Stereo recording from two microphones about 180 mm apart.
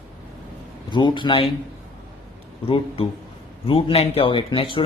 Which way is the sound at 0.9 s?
25° left (ahead or behind).